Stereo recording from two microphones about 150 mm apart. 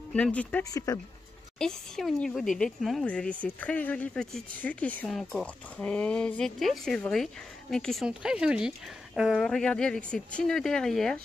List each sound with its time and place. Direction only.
0.1 s speech: 10° left (ahead or behind)
0.7 s speech: 25° left (ahead or behind)
1.6 s speech: 5° left (ahead or behind)